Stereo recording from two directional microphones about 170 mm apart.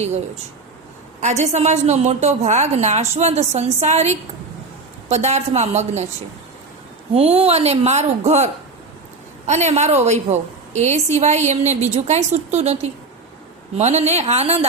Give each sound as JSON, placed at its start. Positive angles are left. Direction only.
{"t": 1.2, "sound": "a woman's voice", "side_deg": -45}
{"t": 7.1, "sound": "a woman's voice", "side_deg": -35}
{"t": 9.5, "sound": "a woman's voice", "side_deg": -40}